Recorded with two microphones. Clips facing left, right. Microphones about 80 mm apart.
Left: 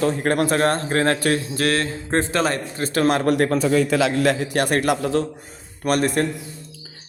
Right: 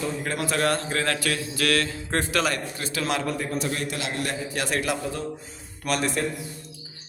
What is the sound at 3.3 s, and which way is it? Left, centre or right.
Speech, left.